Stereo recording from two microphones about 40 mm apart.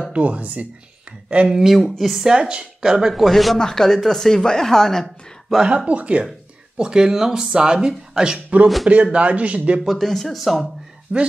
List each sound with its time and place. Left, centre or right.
0.1 s speech: right
1.7 s speech: centre
2.1 s a woman's voice: centre
3.1 s speech: centre
3.5 s speech: centre
5.9 s speech: right
6.8 s a man's voice: centre
8.8 s speech: right
9.8 s speech: centre
11.1 s speech: right